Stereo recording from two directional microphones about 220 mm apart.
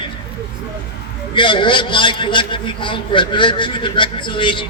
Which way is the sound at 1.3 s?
20° left (ahead or behind).